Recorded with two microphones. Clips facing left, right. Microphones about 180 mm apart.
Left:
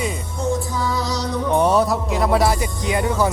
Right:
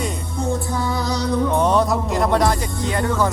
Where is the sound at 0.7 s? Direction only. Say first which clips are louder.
Right 1 dB; 55° right (ahead or behind).